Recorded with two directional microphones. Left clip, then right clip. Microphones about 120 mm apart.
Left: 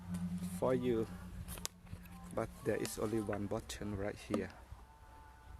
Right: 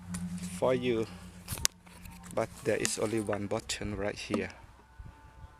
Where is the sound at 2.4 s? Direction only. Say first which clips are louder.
Right 7 dB; 15° right (ahead or behind).